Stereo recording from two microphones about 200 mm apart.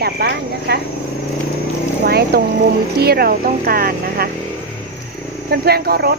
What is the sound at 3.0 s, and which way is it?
Speech, 50° right (ahead or behind).